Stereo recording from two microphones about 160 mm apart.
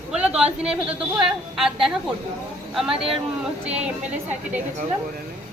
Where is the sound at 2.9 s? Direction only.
35° right (ahead or behind).